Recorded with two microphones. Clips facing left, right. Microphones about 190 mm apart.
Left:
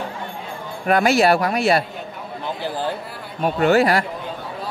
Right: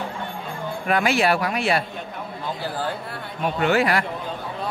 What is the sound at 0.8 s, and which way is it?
Speech, 40° left (ahead or behind).